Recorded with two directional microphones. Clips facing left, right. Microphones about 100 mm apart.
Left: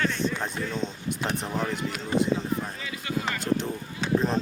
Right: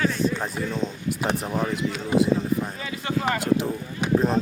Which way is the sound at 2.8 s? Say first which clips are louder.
Right 5 dB; 40° right (ahead or behind).